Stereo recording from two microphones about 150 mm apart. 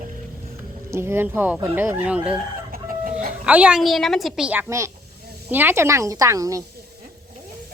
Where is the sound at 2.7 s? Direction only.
65° right (ahead or behind).